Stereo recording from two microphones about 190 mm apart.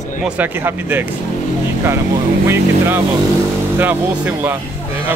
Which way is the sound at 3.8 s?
10° right (ahead or behind).